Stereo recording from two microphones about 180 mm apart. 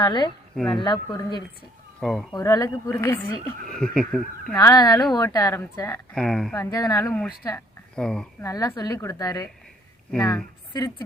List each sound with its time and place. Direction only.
0.0 s a woman's voice: 25° left (ahead or behind)
2.0 s speech: 5° left (ahead or behind)
2.3 s a woman's voice: 20° left (ahead or behind); by 4.5 s 5° left (ahead or behind)
4.5 s a woman's voice: 20° left (ahead or behind)
6.1 s speech: 5° left (ahead or behind)
6.6 s a woman's voice: 20° left (ahead or behind)
7.9 s speech: 5° left (ahead or behind)
8.4 s a woman's voice: 20° left (ahead or behind)
10.7 s a woman's voice: 20° left (ahead or behind)